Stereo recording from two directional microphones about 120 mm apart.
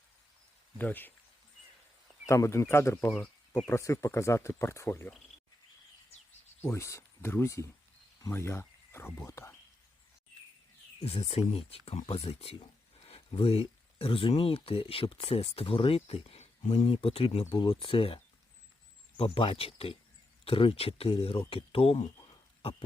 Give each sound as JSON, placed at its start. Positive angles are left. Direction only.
{"t": 0.8, "sound": "speech", "side_deg": 15}
{"t": 2.2, "sound": "speech", "side_deg": 25}
{"t": 3.1, "sound": "speech", "side_deg": 5}
{"t": 3.7, "sound": "speech", "side_deg": 25}
{"t": 6.6, "sound": "speech", "side_deg": 20}
{"t": 11.0, "sound": "speech", "side_deg": 55}